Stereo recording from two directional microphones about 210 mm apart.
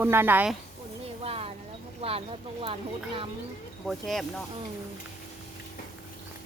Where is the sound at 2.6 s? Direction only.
25° right (ahead or behind).